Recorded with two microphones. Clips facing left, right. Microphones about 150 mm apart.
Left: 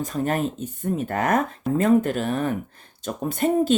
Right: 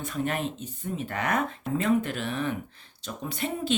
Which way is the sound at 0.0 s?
40° left (ahead or behind).